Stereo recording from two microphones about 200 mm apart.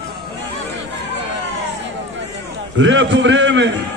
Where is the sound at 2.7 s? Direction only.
65° right (ahead or behind).